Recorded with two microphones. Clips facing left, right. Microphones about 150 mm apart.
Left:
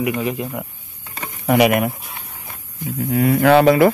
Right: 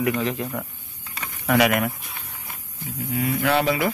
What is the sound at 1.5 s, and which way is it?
Speech, 20° left (ahead or behind).